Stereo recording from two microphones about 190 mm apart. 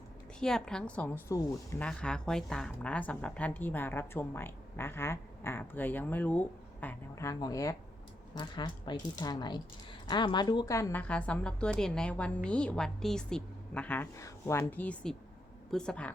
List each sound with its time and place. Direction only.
0.3 s a woman's voice: 5° left (ahead or behind)